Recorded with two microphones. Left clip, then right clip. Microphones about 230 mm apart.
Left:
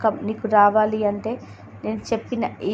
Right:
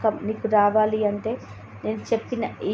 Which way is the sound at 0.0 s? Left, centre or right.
Centre.